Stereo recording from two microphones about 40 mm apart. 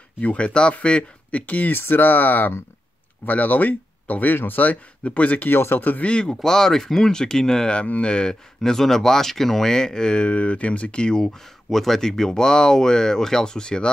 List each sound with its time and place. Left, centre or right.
0.2 s speech: left
1.4 s speech: left
1.7 s speech: left
5.5 s speech: left
5.8 s speech: left
6.0 s speech: left
6.3 s speech: centre
7.7 s speech: left
8.1 s speech: centre
11.2 s speech: centre; by 13.8 s left